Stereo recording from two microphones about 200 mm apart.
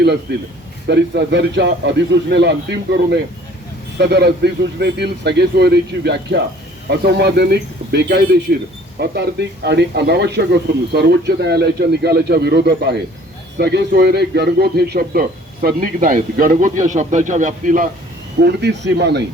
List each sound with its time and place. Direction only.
0.3 s a man's voice: 55° right (ahead or behind); by 17.8 s 40° right (ahead or behind)
18.3 s speech: 55° right (ahead or behind)